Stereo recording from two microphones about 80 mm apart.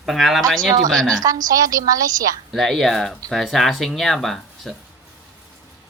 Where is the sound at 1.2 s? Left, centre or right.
Right.